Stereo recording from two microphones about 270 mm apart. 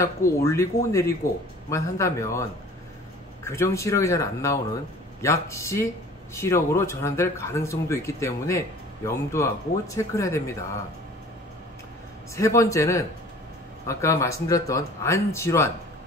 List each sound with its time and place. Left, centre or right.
0.0 s speech: centre
3.4 s speech: centre
12.4 s speech: centre